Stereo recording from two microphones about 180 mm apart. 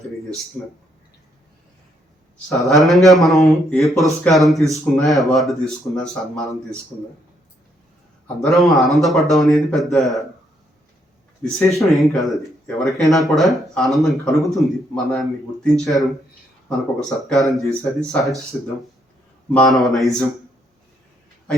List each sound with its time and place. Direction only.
2.6 s speech: centre (ahead or behind)
8.4 s speech: centre (ahead or behind)
11.8 s speech: centre (ahead or behind)
19.5 s speech: centre (ahead or behind)